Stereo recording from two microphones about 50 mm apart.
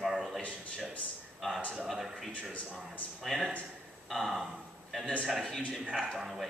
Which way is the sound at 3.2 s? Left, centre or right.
Centre.